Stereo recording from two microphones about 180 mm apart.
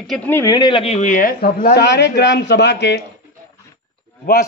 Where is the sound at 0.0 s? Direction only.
5° left (ahead or behind); by 3.0 s 70° left (ahead or behind).